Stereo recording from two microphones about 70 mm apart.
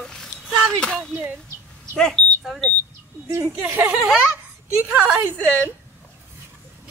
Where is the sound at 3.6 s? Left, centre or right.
Right.